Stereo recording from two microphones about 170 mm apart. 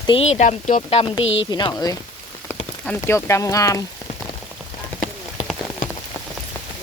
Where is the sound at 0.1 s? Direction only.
40° left (ahead or behind); by 2.0 s 25° left (ahead or behind).